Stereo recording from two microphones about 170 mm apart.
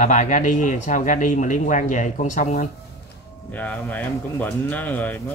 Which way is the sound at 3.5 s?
10° left (ahead or behind).